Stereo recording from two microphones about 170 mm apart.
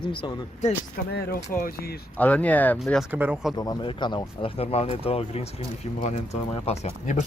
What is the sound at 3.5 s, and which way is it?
Speech, 25° left (ahead or behind).